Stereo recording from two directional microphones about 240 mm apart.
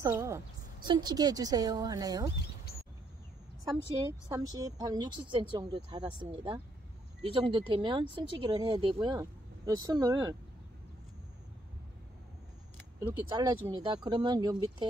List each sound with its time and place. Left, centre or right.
0.0 s a woman's voice: centre
4.3 s a woman's voice: centre
13.0 s a woman's voice: centre